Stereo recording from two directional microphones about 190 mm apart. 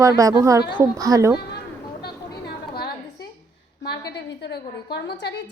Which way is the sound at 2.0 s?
55° left (ahead or behind).